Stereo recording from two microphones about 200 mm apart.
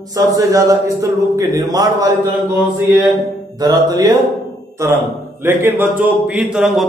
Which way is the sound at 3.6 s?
20° right (ahead or behind).